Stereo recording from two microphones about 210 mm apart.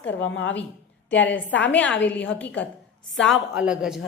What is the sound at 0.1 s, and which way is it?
Speech, 65° left (ahead or behind).